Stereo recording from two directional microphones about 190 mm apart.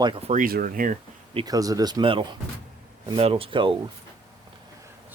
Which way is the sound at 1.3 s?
20° right (ahead or behind).